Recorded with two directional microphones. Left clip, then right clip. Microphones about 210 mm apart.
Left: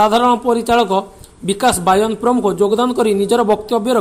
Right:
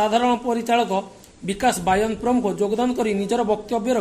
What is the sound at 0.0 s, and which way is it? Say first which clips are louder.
A man's voice: left 7 dB; 20° left (ahead or behind).